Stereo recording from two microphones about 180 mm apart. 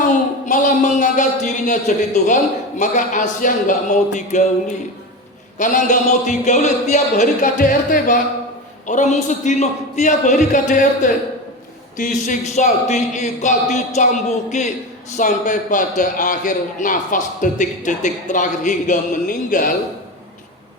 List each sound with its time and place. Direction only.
0.4 s a man's voice: 45° left (ahead or behind)
5.5 s a man's voice: 45° left (ahead or behind)